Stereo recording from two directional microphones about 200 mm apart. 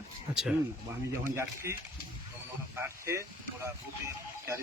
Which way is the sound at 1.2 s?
15° right (ahead or behind).